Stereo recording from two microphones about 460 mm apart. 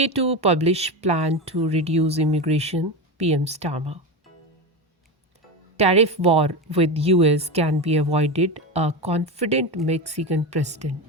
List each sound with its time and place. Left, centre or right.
0.0 s speech: centre
5.7 s speech: centre